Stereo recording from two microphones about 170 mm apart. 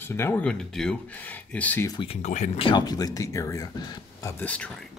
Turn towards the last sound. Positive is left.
turn(degrees=5)  # may be behind; listen again after turning